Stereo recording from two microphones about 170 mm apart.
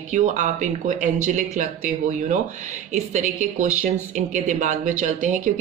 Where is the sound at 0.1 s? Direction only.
45° right (ahead or behind).